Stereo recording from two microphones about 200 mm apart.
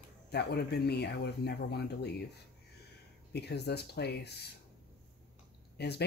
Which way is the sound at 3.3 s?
55° left (ahead or behind).